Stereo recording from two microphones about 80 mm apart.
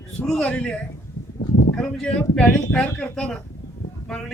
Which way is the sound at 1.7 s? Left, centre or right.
Centre.